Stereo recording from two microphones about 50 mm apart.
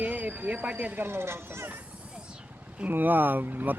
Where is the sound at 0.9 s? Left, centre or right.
Right.